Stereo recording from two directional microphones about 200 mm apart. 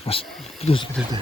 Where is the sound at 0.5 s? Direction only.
30° left (ahead or behind).